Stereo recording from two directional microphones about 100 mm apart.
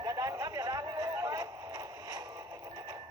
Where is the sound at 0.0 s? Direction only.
35° right (ahead or behind).